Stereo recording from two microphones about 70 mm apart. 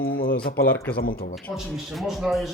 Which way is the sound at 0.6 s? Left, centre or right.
Left.